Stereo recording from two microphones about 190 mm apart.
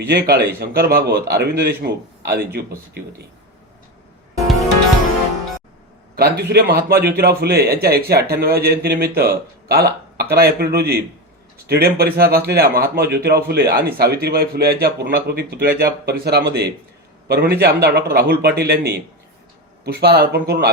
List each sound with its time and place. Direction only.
0.1 s a man's voice: 55° right (ahead or behind)
6.1 s a man's voice: 55° right (ahead or behind)